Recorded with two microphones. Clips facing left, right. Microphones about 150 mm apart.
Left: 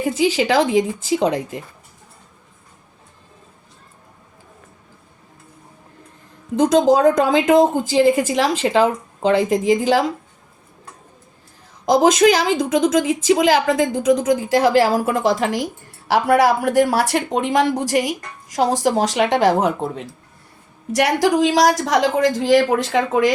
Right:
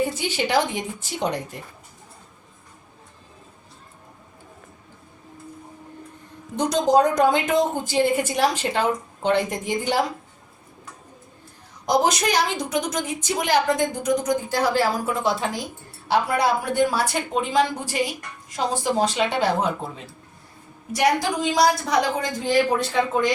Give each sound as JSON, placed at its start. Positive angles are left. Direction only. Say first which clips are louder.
{"t": 0.2, "sound": "a woman's voice", "louder": "left 6 dB", "side_deg": 90}
{"t": 6.6, "sound": "a woman's voice", "louder": "left 5 dB", "side_deg": 90}
{"t": 12.0, "sound": "a woman's voice", "louder": "left 8 dB", "side_deg": 90}